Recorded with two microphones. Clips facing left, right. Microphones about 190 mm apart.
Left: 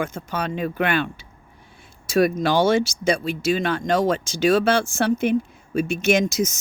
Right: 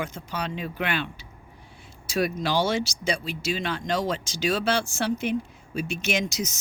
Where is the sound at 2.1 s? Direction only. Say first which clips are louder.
Left 7 dB; 50° left (ahead or behind).